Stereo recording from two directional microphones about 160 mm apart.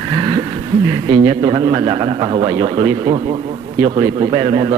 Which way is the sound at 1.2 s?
30° right (ahead or behind).